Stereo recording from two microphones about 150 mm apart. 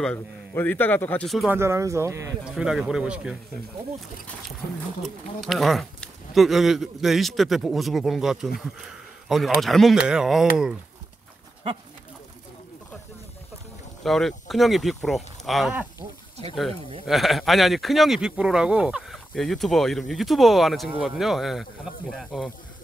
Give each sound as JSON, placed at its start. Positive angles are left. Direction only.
{"t": 0.0, "sound": "a man's voice", "side_deg": 10}
{"t": 1.5, "sound": "speech", "side_deg": -15}
{"t": 2.4, "sound": "speech", "side_deg": -5}
{"t": 5.0, "sound": "speech", "side_deg": 0}
{"t": 14.0, "sound": "speech", "side_deg": 0}
{"t": 17.0, "sound": "speech", "side_deg": 0}